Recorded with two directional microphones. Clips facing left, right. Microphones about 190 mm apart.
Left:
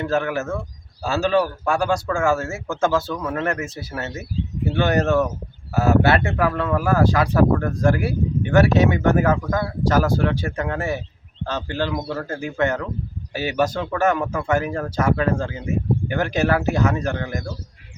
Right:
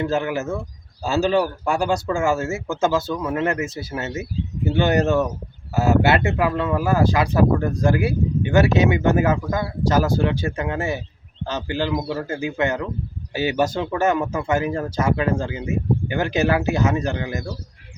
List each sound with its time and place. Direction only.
0.0 s speech: 20° right (ahead or behind)